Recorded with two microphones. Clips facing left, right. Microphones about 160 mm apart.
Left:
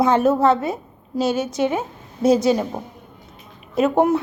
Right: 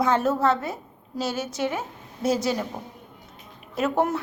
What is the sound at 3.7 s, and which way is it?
Speech, 20° left (ahead or behind).